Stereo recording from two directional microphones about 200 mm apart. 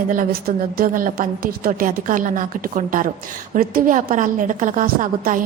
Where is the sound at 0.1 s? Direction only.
45° right (ahead or behind).